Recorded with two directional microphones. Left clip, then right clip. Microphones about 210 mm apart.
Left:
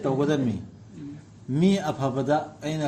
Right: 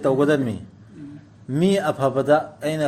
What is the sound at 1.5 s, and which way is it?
A man's voice, 50° right (ahead or behind).